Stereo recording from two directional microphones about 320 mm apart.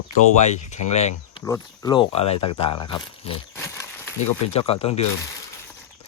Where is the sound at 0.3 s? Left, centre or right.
Left.